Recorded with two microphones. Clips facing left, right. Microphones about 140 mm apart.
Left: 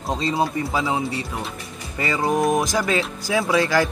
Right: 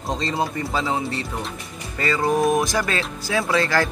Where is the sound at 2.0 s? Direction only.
15° left (ahead or behind).